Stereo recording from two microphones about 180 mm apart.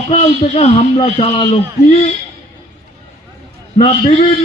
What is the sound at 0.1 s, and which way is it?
A man's voice, 35° left (ahead or behind).